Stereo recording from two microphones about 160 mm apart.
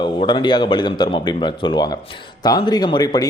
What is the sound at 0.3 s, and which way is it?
A man's voice, 30° left (ahead or behind).